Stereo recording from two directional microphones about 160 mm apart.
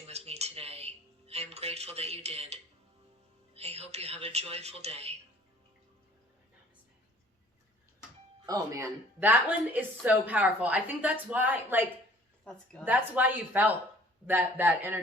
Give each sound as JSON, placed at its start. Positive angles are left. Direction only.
{"t": 0.1, "sound": "a sound", "side_deg": -40}
{"t": 3.5, "sound": "speech", "side_deg": -40}
{"t": 8.4, "sound": "a woman's voice", "side_deg": -20}